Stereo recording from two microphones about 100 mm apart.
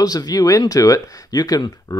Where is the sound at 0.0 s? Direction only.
40° left (ahead or behind).